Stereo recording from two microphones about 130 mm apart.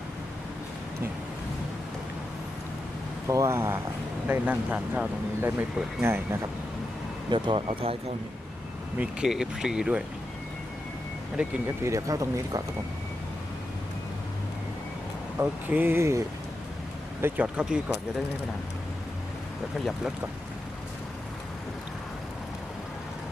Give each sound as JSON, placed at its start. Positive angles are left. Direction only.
{"t": 3.2, "sound": "speech", "side_deg": -20}
{"t": 7.3, "sound": "speech", "side_deg": -40}
{"t": 9.0, "sound": "speech", "side_deg": -5}
{"t": 11.8, "sound": "speech", "side_deg": -25}
{"t": 15.4, "sound": "speech", "side_deg": -15}